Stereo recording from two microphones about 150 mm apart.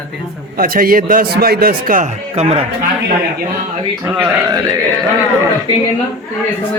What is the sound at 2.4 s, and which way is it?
Speech, 45° right (ahead or behind).